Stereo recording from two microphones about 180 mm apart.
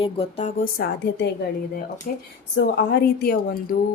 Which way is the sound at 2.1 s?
55° left (ahead or behind).